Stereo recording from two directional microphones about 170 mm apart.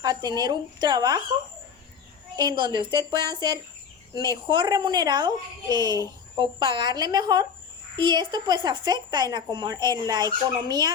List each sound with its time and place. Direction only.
0.0 s speech: 25° right (ahead or behind)
2.3 s speech: 25° right (ahead or behind)